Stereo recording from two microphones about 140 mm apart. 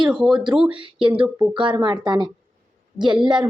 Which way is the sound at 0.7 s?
40° right (ahead or behind).